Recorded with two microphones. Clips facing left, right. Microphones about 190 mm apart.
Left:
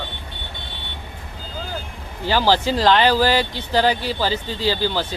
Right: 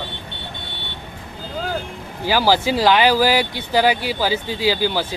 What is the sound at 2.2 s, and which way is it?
Speech, 10° right (ahead or behind).